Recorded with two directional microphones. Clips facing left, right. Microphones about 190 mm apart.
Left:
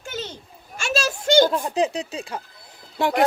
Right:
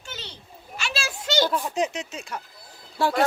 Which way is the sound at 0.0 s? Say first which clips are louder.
Left 8 dB; 45° left (ahead or behind).